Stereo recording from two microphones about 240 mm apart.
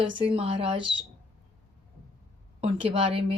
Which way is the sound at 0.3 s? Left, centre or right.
Right.